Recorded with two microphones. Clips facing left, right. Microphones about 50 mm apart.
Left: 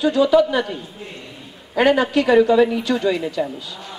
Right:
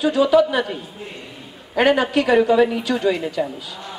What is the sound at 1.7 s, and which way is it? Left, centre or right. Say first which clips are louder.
Speech: left 1 dB; centre.